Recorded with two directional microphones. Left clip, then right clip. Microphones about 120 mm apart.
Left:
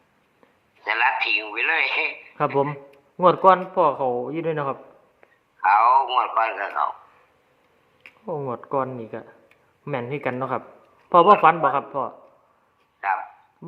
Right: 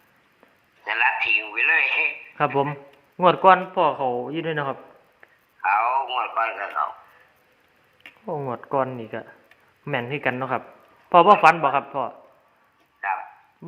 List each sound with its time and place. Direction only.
0.8 s a man's voice: 25° left (ahead or behind)
3.2 s a man's voice: 10° right (ahead or behind)
5.6 s radio: 25° left (ahead or behind)
8.2 s a man's voice: 20° right (ahead or behind)
8.5 s a man's voice: 30° right (ahead or behind); by 10.6 s 10° right (ahead or behind)
11.1 s speech: 20° right (ahead or behind)
11.6 s a man's voice: 5° right (ahead or behind)
13.0 s a sound: 25° left (ahead or behind)
13.6 s a sound: centre (ahead or behind)